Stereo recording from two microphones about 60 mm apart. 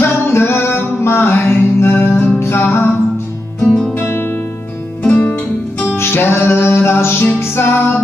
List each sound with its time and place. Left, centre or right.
0.0 s music: left
3.6 s music: centre
3.9 s music: left
5.9 s music: left